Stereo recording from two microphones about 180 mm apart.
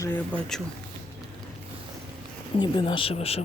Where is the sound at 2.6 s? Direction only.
25° left (ahead or behind).